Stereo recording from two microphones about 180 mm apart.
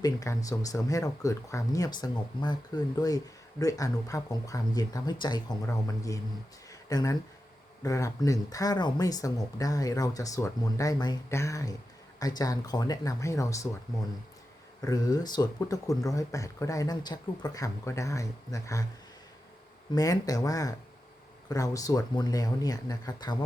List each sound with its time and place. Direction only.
0.0 s speech: 20° left (ahead or behind)
14.8 s speech: 20° left (ahead or behind)
19.9 s speech: 20° left (ahead or behind)